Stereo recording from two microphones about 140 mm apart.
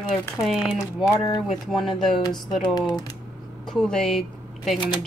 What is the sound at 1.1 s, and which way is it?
Speech, 25° left (ahead or behind).